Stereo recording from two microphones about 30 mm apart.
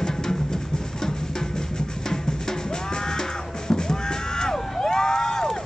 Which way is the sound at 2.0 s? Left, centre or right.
Centre.